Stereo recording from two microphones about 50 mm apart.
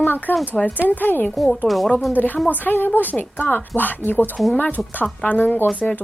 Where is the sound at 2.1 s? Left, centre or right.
Left.